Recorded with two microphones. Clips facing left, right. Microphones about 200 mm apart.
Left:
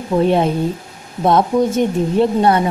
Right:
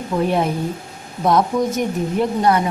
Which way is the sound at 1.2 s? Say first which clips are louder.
Left 3 dB; 25° left (ahead or behind).